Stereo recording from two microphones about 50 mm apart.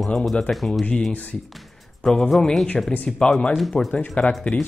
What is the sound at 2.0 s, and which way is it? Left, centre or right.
Speech, centre.